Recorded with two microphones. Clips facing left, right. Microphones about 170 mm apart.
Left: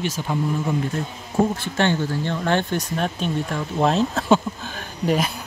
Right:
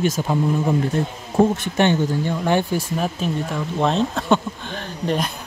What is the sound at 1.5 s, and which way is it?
Speech, 15° right (ahead or behind).